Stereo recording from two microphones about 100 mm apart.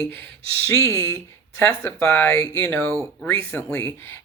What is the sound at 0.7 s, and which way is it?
Speech, 30° left (ahead or behind).